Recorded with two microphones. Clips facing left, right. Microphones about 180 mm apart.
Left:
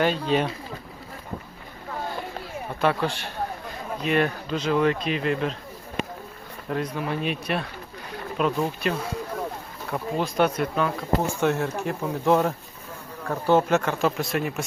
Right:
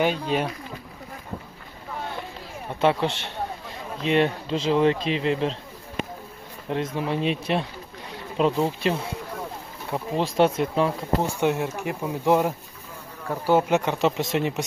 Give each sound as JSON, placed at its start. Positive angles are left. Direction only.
{"t": 0.0, "sound": "speech", "side_deg": -10}
{"t": 2.8, "sound": "speech", "side_deg": -25}
{"t": 6.7, "sound": "speech", "side_deg": -25}
{"t": 11.3, "sound": "speech", "side_deg": -15}